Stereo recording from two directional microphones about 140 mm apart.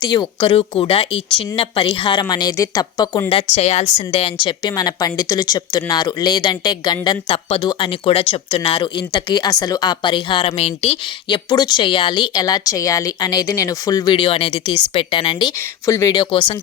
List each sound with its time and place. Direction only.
0.0 s a woman's voice: 30° left (ahead or behind)
3.2 s a woman's voice: 45° left (ahead or behind)
11.4 s speech: 30° left (ahead or behind)
15.9 s speech: 20° left (ahead or behind)
16.2 s a woman's voice: 35° left (ahead or behind)